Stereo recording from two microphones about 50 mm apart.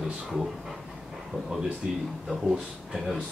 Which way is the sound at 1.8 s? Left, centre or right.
Centre.